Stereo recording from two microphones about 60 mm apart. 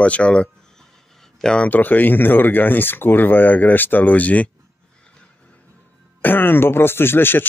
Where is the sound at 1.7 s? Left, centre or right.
Left.